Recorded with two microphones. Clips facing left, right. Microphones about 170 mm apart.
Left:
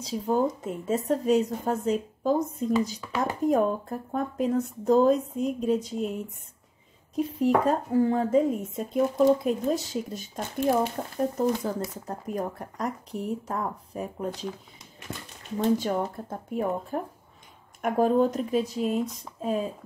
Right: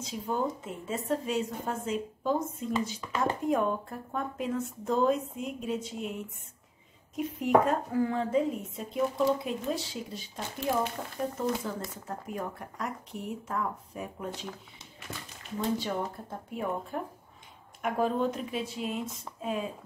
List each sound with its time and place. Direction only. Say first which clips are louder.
0.0 s a woman's voice: left 6 dB; 40° left (ahead or behind)
7.2 s a woman's voice: left 2 dB; 35° left (ahead or behind)
15.8 s a woman's voice: left 5 dB; 45° left (ahead or behind)